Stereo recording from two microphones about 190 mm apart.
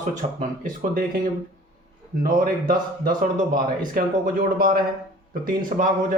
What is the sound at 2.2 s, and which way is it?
Speech, 45° right (ahead or behind).